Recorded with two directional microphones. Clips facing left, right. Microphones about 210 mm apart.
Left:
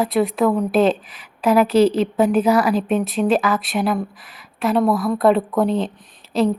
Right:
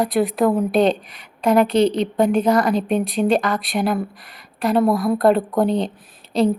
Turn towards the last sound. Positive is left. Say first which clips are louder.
# even
turn(degrees=-5)  # may be behind; listen again after turning